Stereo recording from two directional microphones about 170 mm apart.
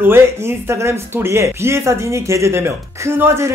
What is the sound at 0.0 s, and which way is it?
Speech, 15° right (ahead or behind).